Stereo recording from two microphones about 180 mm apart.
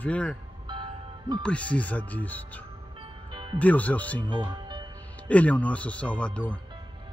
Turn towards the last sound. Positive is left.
turn(degrees=5)  # may be behind; listen again after turning